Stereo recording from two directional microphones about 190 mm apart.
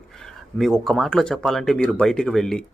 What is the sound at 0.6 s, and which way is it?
Speech, centre (ahead or behind).